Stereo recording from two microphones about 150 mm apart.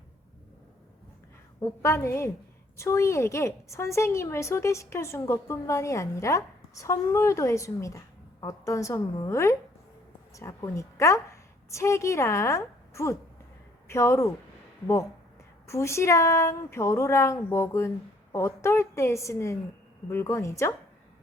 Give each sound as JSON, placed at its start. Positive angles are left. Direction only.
{"t": 1.8, "sound": "a woman's voice", "side_deg": 20}
{"t": 15.6, "sound": "a woman's voice", "side_deg": 20}